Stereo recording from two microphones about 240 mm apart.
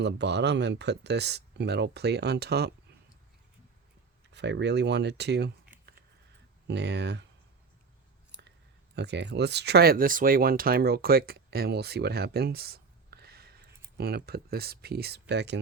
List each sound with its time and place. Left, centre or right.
0.0 s speech: right
4.3 s speech: right
6.7 s speech: right
9.0 s speech: right